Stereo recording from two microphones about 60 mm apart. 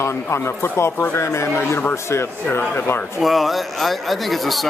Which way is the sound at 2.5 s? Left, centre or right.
Left.